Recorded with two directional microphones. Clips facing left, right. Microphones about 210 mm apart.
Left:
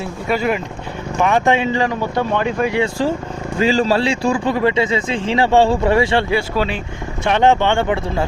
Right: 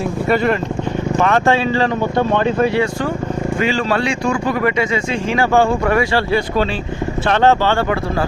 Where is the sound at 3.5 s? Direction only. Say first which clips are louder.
Left 4 dB; 35° left (ahead or behind).